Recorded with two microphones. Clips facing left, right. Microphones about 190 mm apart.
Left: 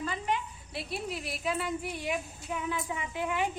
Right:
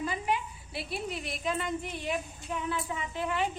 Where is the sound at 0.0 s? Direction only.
10° right (ahead or behind).